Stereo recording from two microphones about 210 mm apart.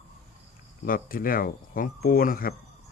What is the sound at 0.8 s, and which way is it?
Speech, 45° left (ahead or behind).